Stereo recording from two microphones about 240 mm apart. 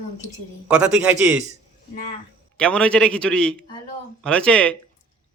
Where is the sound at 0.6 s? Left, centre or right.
Centre.